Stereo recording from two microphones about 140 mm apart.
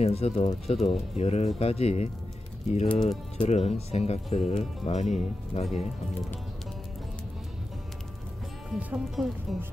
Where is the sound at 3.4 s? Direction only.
50° left (ahead or behind).